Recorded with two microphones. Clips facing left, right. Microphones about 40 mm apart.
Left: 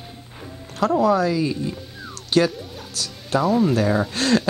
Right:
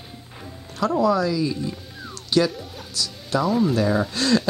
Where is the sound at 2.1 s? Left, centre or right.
Left.